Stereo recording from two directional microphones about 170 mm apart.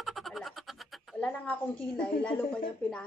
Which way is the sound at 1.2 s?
5° left (ahead or behind).